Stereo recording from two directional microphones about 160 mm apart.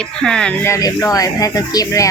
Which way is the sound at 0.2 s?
5° left (ahead or behind).